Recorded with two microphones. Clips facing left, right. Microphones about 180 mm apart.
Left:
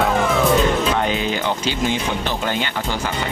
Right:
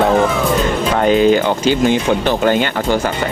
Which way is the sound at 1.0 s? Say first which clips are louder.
Right 10 dB; 45° right (ahead or behind).